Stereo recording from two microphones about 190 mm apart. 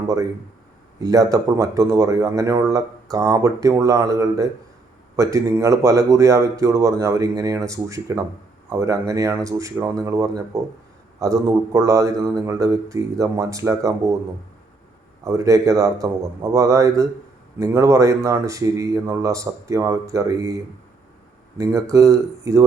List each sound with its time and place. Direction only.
0.9 s speech: 20° right (ahead or behind)
15.2 s speech: 15° right (ahead or behind)
21.6 s speech: 15° right (ahead or behind)